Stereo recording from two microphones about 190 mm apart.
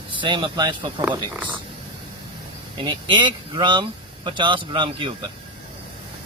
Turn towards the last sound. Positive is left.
turn(degrees=-25)  # may be behind; listen again after turning